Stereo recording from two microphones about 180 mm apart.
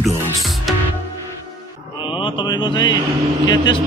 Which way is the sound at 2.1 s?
25° left (ahead or behind).